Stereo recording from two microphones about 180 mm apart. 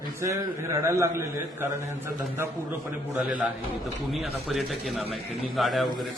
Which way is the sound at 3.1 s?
Centre (ahead or behind).